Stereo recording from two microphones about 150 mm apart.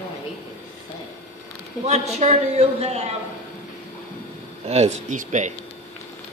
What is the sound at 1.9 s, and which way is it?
Speech, 50° right (ahead or behind).